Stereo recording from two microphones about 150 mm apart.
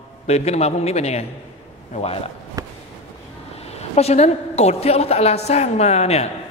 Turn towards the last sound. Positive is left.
turn(degrees=45)  # may be behind; listen again after turning